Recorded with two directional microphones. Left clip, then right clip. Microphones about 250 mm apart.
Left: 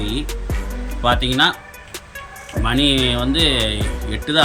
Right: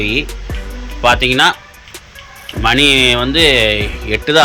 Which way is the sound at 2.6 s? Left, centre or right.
Centre.